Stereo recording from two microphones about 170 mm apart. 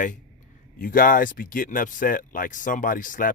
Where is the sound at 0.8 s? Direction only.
55° left (ahead or behind).